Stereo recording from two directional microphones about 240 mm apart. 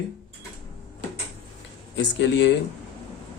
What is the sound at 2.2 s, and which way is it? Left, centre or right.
Speech, left.